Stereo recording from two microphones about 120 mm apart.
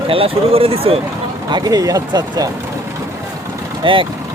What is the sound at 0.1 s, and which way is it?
Speech, 50° right (ahead or behind).